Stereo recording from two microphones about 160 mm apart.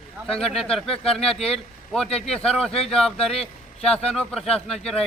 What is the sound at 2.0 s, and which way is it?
Speech, 40° left (ahead or behind).